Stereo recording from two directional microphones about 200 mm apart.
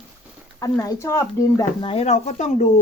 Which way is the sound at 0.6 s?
15° left (ahead or behind).